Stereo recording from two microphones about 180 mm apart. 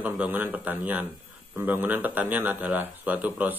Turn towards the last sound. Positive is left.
turn(degrees=-10)  # may be behind; listen again after turning